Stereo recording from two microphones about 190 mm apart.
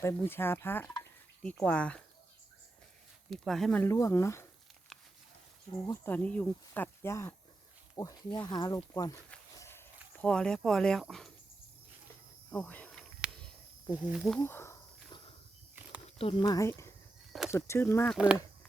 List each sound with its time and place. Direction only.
0.0 s speech: 10° left (ahead or behind)
3.2 s speech: centre (ahead or behind)
3.8 s speech: 15° left (ahead or behind)
5.8 s speech: 10° left (ahead or behind)
9.6 s walk: 10° left (ahead or behind)
10.2 s speech: 5° left (ahead or behind)
12.5 s cricket: 10° left (ahead or behind)
14.0 s speech: 5° right (ahead or behind)
14.3 s speech: 10° left (ahead or behind)
16.0 s a sound: 30° left (ahead or behind)
16.5 s speech: 15° left (ahead or behind)